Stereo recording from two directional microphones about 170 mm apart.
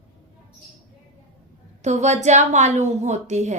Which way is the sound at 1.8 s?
45° right (ahead or behind).